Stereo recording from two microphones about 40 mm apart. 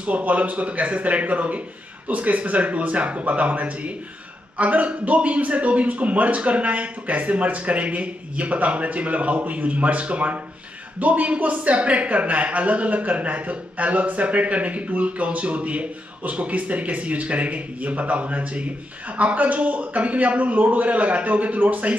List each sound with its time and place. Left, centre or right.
0.0 s speech: right